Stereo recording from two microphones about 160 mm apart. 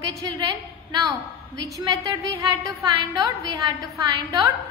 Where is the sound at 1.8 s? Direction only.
20° right (ahead or behind).